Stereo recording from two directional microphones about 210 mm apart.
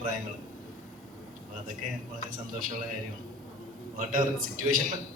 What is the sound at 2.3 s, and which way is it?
Speech, 40° right (ahead or behind).